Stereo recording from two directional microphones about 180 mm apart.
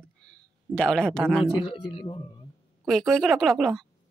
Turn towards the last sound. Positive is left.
turn(degrees=0)  # may be behind; listen again after turning